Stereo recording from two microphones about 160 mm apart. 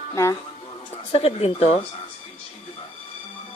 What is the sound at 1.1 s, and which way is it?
Speech, 40° left (ahead or behind).